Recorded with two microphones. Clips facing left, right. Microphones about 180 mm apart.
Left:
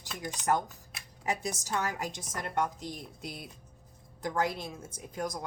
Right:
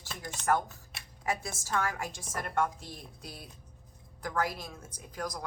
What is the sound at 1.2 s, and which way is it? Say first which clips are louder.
A woman's voice: left 1 dB; 20° left (ahead or behind).